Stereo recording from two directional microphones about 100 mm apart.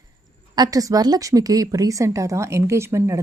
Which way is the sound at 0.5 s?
40° right (ahead or behind).